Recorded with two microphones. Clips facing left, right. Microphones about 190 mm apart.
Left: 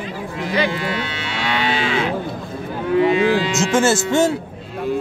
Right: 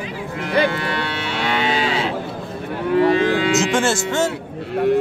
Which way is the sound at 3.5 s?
Centre (ahead or behind).